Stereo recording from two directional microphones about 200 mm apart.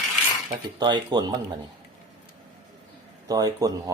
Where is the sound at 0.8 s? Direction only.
20° right (ahead or behind).